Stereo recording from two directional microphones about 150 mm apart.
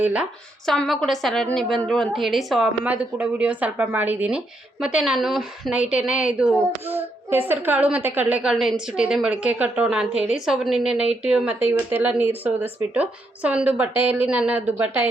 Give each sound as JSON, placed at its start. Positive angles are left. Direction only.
{"t": 0.0, "sound": "speech", "side_deg": -10}
{"t": 0.6, "sound": "a woman's voice", "side_deg": 0}